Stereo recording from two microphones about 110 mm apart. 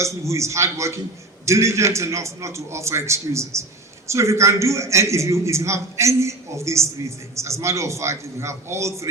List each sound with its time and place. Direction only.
0.0 s a man's voice: 25° right (ahead or behind)